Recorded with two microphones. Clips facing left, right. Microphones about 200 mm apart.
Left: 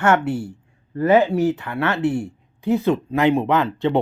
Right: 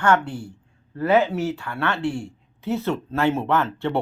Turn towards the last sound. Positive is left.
turn(degrees=15)  # may be behind; listen again after turning